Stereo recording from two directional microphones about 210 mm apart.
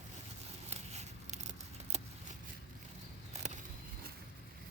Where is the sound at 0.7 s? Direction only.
30° right (ahead or behind).